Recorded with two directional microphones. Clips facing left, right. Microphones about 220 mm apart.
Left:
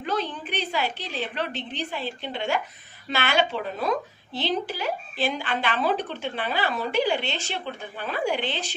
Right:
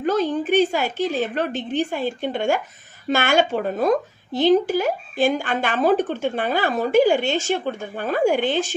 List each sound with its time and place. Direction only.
0.0 s speech: 45° right (ahead or behind)